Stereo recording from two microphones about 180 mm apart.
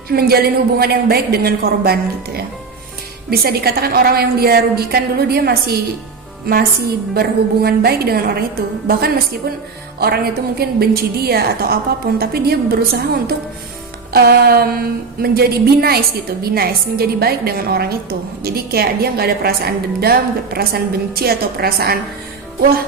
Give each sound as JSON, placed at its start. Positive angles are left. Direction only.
{"t": 0.1, "sound": "a woman's voice", "side_deg": -60}
{"t": 10.6, "sound": "a woman's voice", "side_deg": -60}
{"t": 14.1, "sound": "a woman's voice", "side_deg": -60}